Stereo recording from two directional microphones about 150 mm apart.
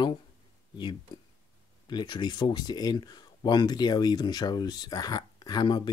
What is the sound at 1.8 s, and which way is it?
Speech, 30° left (ahead or behind).